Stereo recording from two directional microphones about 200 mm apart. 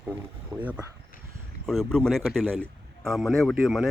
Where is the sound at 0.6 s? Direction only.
5° right (ahead or behind).